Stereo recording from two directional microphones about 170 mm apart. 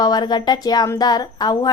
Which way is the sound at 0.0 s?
25° left (ahead or behind).